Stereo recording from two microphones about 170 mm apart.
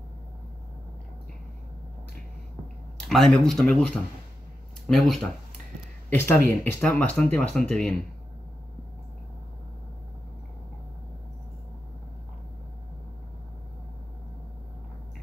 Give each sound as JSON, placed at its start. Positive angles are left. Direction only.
{"t": 3.1, "sound": "speech", "side_deg": 5}
{"t": 4.8, "sound": "speech", "side_deg": 0}
{"t": 6.0, "sound": "speech", "side_deg": 15}